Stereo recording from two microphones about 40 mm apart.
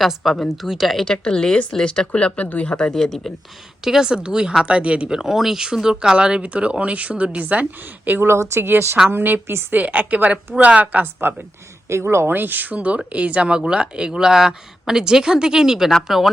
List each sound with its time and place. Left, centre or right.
0.4 s speech: centre
0.9 s speech: centre; by 2.7 s left
2.7 s speech: centre
3.8 s speech: centre
6.4 s a woman's voice: right
8.2 s a woman's voice: right
9.0 s a woman's voice: right
9.5 s a woman's voice: right
9.7 s a woman's voice: right
11.0 s a woman's voice: right
12.0 s a woman's voice: right
12.3 s speech: right; by 15.9 s centre
16.0 s speech: centre